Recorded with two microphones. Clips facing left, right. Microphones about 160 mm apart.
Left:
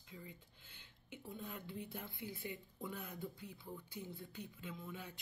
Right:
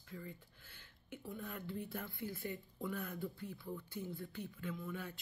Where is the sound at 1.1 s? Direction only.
20° left (ahead or behind).